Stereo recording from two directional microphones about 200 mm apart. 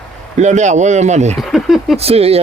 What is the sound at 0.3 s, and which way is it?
Speech, 35° right (ahead or behind).